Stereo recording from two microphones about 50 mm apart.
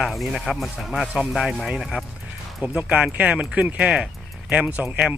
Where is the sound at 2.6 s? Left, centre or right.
Right.